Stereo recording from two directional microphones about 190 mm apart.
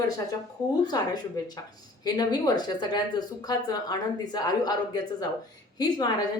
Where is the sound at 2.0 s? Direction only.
20° left (ahead or behind).